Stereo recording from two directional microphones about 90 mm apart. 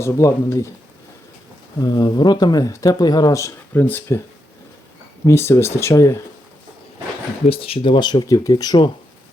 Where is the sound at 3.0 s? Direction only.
50° left (ahead or behind).